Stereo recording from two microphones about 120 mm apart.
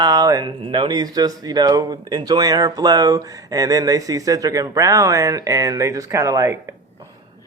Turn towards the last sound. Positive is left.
turn(degrees=-25)  # may be behind; listen again after turning